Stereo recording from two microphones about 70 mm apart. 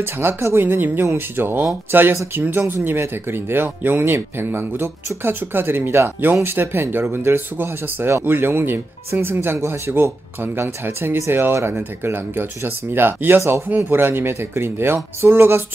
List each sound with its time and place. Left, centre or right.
0.0 s speech: right